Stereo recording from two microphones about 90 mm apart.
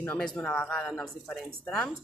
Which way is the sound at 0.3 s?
10° left (ahead or behind).